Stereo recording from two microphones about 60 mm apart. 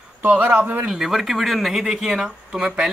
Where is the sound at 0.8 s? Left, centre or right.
Centre.